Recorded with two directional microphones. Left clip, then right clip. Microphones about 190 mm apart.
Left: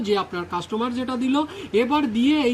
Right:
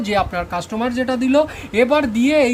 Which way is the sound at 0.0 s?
40° right (ahead or behind).